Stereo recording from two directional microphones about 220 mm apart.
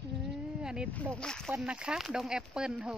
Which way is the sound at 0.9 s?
5° left (ahead or behind).